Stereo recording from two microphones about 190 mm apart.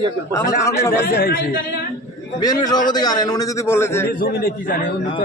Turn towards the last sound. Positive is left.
turn(degrees=50)  # may be behind; listen again after turning